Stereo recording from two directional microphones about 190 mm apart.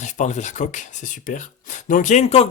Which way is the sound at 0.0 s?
40° left (ahead or behind).